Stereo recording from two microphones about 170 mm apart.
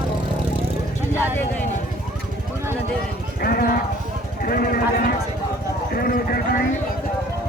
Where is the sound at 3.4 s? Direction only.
65° left (ahead or behind).